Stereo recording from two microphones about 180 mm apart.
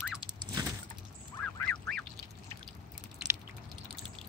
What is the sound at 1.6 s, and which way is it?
Duck, 5° left (ahead or behind).